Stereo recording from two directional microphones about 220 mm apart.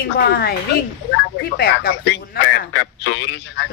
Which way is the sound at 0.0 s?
45° left (ahead or behind).